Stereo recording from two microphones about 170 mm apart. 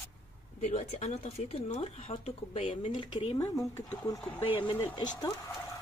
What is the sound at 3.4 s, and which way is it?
Speech, 20° left (ahead or behind).